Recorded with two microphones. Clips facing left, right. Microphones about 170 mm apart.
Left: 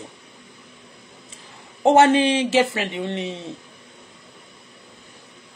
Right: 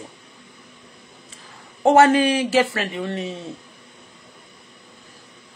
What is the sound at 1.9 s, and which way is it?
Speech, 25° left (ahead or behind).